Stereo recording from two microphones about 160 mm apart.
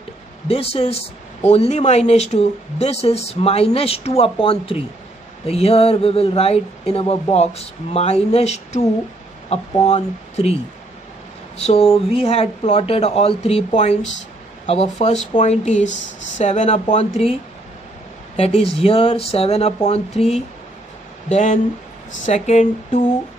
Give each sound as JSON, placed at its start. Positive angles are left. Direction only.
{"t": 0.5, "sound": "speech", "side_deg": 40}
{"t": 11.6, "sound": "speech", "side_deg": 40}